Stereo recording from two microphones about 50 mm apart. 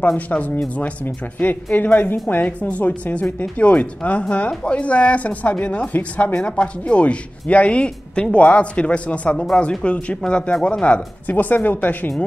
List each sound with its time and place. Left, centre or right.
0.3 s a woman's voice: left